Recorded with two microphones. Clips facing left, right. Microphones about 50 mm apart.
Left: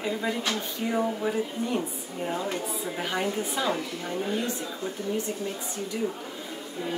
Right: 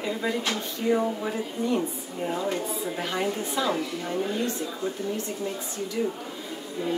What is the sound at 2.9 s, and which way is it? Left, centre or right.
A woman's voice, centre.